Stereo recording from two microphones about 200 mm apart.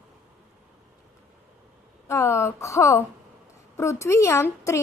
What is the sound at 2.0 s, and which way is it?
A woman's voice, 15° left (ahead or behind).